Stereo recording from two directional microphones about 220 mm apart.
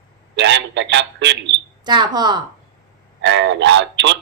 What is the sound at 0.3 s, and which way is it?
A man's voice, 55° right (ahead or behind).